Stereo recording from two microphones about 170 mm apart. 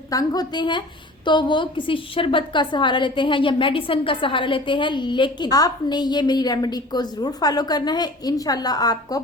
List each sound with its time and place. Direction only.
0.1 s a woman's voice: 20° left (ahead or behind)